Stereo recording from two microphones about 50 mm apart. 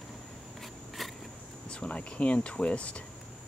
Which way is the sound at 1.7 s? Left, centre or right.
Left.